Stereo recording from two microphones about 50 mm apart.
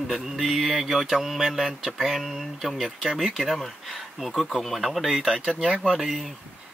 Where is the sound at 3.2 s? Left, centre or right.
Centre.